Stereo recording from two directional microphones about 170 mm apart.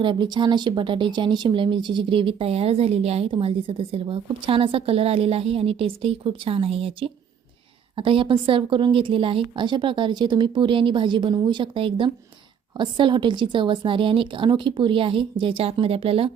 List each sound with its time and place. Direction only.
0.0 s a woman's voice: 30° right (ahead or behind)